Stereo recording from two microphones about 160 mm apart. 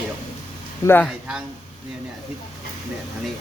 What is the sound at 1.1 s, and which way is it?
Speech, 5° right (ahead or behind).